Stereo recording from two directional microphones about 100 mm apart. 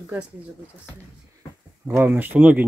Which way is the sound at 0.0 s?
15° right (ahead or behind).